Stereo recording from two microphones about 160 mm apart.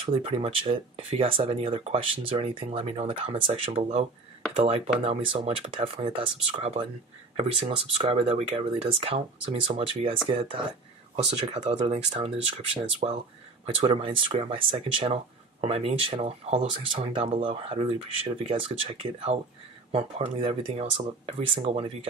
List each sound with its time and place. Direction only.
0.0 s speech: 35° right (ahead or behind)
11.5 s speech: 45° right (ahead or behind)